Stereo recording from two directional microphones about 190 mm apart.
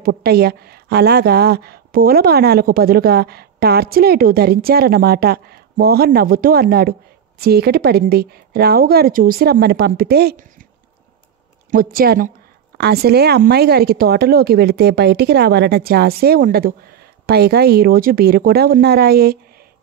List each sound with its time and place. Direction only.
0.0 s a woman's voice: 55° right (ahead or behind)
11.7 s a woman's voice: 50° right (ahead or behind)